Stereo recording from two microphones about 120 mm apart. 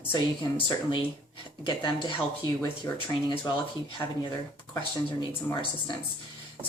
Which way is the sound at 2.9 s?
25° left (ahead or behind).